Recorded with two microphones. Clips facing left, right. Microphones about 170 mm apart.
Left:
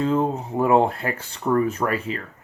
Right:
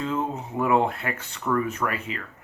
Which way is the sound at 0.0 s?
35° left (ahead or behind).